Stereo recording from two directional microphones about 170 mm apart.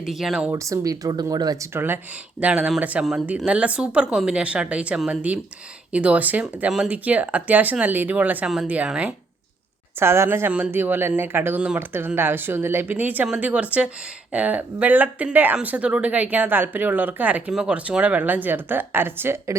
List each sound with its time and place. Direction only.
0.0 s speech: centre (ahead or behind)
0.5 s speech: 20° right (ahead or behind)
2.4 s speech: 5° right (ahead or behind)